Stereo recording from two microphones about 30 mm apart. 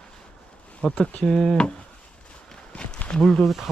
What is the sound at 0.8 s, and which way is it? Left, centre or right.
Speech, left.